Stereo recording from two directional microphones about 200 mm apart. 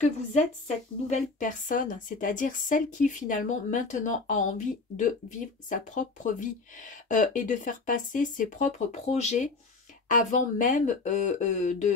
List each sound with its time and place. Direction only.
0.0 s a woman's voice: 35° left (ahead or behind)